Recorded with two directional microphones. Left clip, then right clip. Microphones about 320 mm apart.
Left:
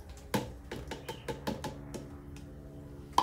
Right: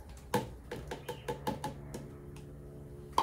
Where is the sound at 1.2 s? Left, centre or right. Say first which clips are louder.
Right 1 dB; centre.